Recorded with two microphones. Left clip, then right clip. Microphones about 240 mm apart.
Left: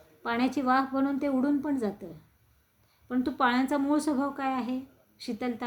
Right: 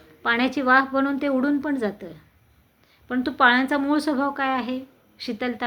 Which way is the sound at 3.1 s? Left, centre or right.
Centre.